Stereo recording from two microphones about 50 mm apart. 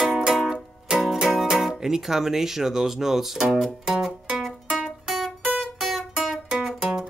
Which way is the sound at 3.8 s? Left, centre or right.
Centre.